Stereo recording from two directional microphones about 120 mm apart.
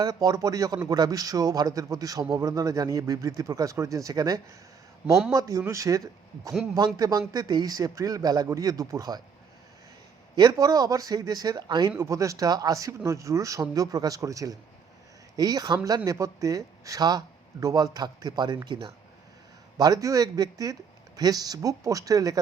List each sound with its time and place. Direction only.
0.0 s a man's voice: 30° right (ahead or behind)
10.3 s a man's voice: 30° right (ahead or behind)